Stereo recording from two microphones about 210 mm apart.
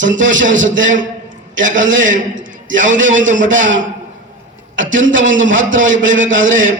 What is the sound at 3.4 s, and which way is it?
A man's voice, 65° right (ahead or behind).